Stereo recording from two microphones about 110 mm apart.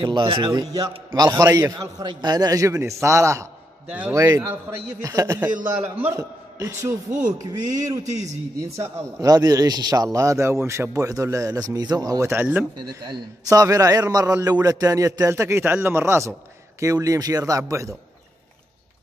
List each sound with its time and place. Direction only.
0.0 s a man's voice: 45° right (ahead or behind); by 3.4 s 25° right (ahead or behind)
3.8 s a man's voice: 10° right (ahead or behind)
4.1 s a man's voice: 30° right (ahead or behind)
13.0 s a man's voice: 35° right (ahead or behind)